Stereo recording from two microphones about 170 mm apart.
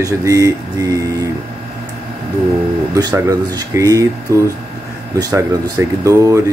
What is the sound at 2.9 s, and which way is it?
Speech, 20° right (ahead or behind).